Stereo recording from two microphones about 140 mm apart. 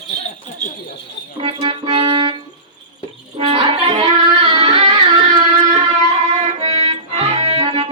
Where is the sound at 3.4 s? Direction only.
40° right (ahead or behind).